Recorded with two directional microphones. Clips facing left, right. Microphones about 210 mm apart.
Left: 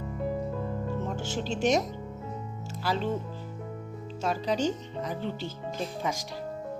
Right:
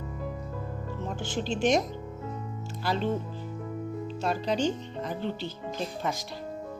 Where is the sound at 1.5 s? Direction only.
40° left (ahead or behind).